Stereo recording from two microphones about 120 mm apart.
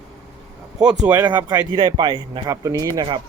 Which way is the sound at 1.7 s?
40° right (ahead or behind).